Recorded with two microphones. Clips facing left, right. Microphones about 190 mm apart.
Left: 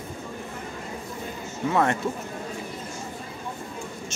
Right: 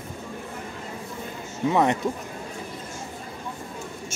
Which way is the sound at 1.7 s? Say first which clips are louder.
Right 2 dB; 15° right (ahead or behind).